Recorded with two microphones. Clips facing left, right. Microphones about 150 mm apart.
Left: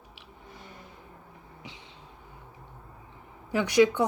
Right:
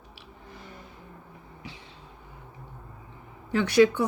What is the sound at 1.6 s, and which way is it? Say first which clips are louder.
Vehicle: right 3 dB; 20° left (ahead or behind).